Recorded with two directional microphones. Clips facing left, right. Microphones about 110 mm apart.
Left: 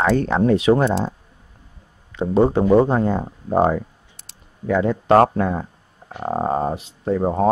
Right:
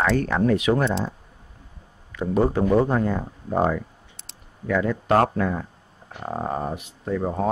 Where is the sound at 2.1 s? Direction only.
25° left (ahead or behind).